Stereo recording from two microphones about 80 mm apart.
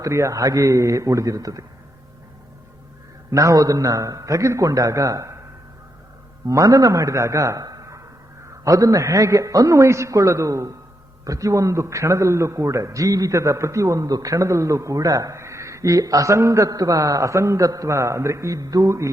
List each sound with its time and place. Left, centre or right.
0.0 s a man's voice: right
3.2 s a man's voice: right
6.5 s a man's voice: right